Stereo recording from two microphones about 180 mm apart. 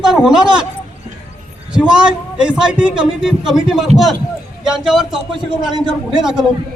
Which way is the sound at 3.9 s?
35° right (ahead or behind).